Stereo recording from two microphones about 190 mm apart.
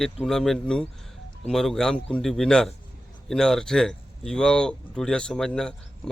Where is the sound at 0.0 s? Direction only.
Centre (ahead or behind).